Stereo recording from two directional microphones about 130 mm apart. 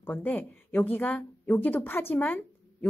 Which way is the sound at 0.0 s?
15° left (ahead or behind).